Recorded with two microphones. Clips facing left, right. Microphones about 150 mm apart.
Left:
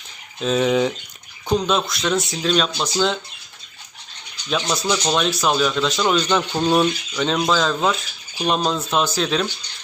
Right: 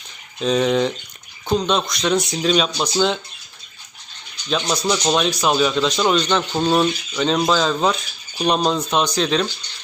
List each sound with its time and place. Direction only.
0.3 s speech: centre (ahead or behind)
4.4 s speech: centre (ahead or behind)